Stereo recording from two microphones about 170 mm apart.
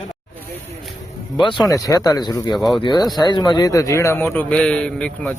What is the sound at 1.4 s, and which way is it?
A man's voice, 30° left (ahead or behind).